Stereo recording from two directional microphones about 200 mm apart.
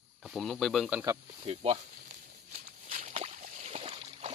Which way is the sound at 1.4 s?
30° right (ahead or behind).